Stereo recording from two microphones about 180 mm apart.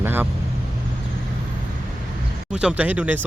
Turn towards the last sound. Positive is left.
turn(degrees=-10)  # may be behind; listen again after turning